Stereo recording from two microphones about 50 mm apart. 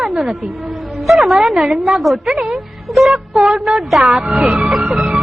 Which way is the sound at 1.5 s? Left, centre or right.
Right.